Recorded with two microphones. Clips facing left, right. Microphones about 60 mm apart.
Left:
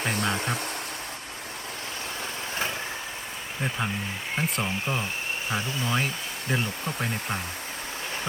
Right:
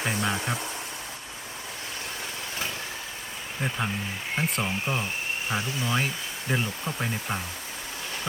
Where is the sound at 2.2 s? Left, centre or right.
Left.